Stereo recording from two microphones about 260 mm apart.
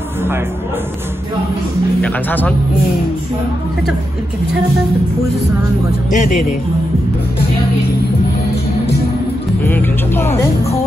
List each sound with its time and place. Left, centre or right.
2.0 s speech: centre
6.0 s speech: left
9.7 s speech: centre